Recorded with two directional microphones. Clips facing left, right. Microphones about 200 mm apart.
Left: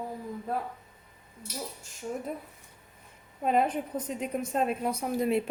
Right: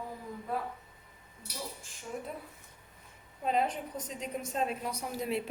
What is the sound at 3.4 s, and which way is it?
A woman's voice, 55° left (ahead or behind).